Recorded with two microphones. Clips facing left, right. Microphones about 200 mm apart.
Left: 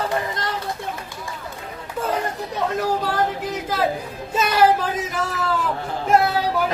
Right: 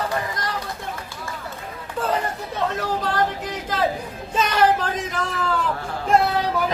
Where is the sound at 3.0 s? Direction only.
10° left (ahead or behind).